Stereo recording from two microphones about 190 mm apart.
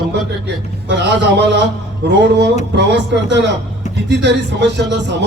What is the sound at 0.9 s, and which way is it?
A man's voice, 65° right (ahead or behind).